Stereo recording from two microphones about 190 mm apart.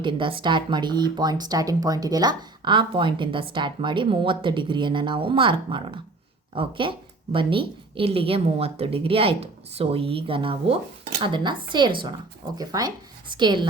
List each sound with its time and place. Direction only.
0.0 s a woman's voice: 25° right (ahead or behind)